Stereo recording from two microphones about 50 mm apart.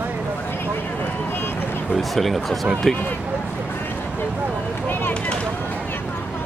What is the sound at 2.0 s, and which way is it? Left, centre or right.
Speech, centre.